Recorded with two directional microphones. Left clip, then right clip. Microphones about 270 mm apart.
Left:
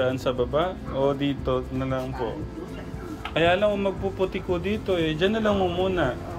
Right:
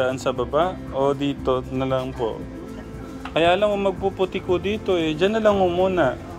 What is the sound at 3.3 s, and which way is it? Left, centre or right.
Speech, centre.